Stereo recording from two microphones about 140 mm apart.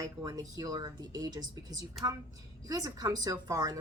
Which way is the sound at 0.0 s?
25° right (ahead or behind).